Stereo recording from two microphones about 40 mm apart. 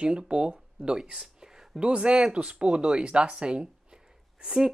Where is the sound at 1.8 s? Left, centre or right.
Right.